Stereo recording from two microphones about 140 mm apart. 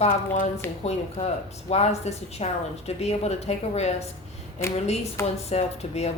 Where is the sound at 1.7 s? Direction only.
50° left (ahead or behind).